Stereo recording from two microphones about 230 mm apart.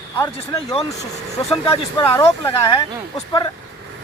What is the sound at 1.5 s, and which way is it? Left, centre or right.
Speech, left.